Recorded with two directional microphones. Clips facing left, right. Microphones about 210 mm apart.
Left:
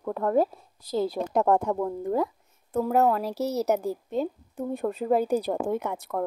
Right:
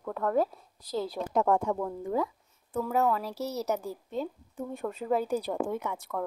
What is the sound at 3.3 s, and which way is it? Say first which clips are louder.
A woman's voice: left 6 dB; 70° left (ahead or behind).